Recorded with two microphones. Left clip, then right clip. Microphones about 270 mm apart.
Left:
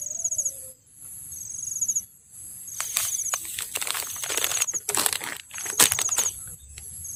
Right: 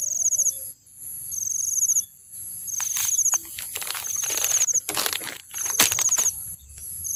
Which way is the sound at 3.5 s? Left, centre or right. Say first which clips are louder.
Left 2 dB; left.